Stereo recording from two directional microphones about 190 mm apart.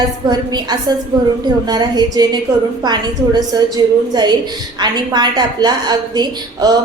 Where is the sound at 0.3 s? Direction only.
20° right (ahead or behind).